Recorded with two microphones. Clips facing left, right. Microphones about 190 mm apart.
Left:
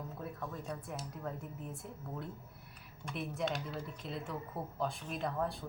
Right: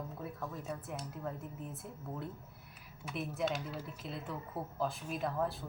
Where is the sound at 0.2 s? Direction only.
Centre (ahead or behind).